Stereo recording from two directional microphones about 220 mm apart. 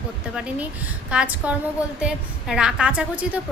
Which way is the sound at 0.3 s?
5° right (ahead or behind).